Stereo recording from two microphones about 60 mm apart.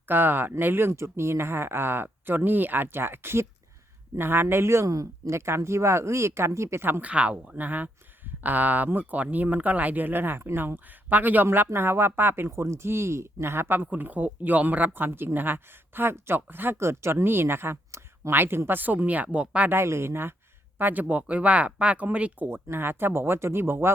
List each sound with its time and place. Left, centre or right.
0.1 s speech: right
4.9 s speech: right
7.0 s speech: right
11.4 s speech: right
13.9 s speech: right
19.7 s speech: right
20.7 s speech: right
22.4 s speech: right